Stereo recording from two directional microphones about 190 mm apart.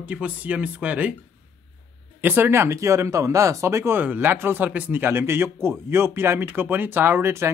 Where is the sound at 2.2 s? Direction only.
10° right (ahead or behind).